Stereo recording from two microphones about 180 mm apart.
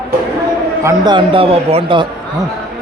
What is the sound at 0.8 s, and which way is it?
Speech, 20° right (ahead or behind).